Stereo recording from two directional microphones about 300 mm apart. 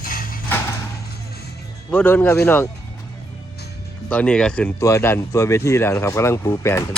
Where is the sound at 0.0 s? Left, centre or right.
Left.